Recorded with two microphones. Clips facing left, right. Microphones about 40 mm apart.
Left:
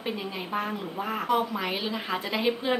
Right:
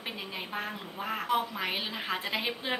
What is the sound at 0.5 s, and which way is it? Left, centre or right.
Speech, centre.